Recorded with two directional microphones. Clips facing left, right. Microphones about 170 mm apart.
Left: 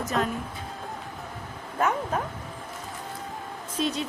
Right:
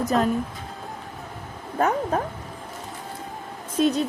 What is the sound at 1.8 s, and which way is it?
Speech, 35° right (ahead or behind).